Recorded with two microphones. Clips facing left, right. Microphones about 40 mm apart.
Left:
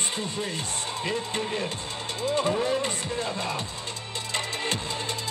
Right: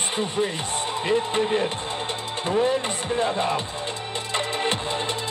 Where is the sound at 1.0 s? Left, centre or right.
Right.